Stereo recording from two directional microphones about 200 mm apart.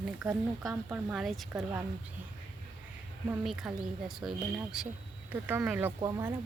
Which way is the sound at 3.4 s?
Centre (ahead or behind).